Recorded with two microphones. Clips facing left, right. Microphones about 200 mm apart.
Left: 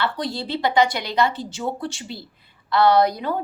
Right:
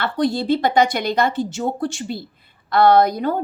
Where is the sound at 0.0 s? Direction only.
50° right (ahead or behind).